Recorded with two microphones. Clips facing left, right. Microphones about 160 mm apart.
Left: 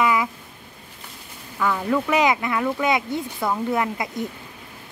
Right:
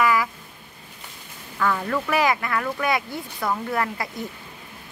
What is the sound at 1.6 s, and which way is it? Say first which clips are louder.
Speech: left 2 dB; 10° left (ahead or behind).